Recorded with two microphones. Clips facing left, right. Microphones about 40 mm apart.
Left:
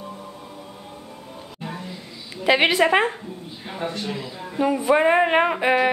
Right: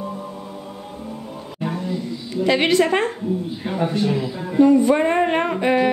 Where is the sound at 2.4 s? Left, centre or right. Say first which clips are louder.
Even; centre.